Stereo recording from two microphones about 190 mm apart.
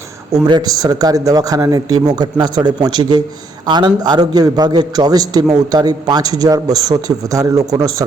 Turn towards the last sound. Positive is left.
turn(degrees=-20)  # may be behind; listen again after turning